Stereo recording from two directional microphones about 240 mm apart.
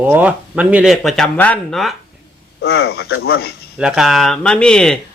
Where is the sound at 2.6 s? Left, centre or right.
Left.